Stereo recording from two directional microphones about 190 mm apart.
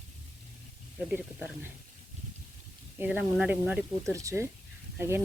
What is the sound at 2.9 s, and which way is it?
Speech, 10° right (ahead or behind).